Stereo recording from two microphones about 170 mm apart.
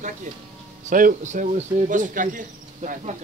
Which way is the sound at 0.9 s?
50° right (ahead or behind).